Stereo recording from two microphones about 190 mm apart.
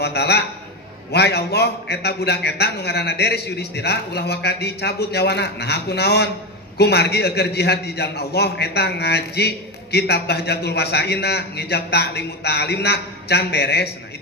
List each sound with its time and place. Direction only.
0.0 s a man's voice: 60° left (ahead or behind)